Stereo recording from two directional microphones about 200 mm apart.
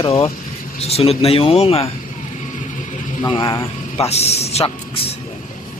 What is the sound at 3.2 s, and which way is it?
Speech, 20° left (ahead or behind).